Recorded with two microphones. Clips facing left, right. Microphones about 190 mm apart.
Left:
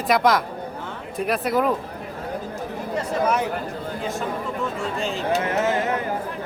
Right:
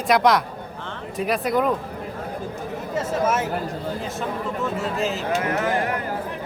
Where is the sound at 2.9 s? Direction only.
Centre (ahead or behind).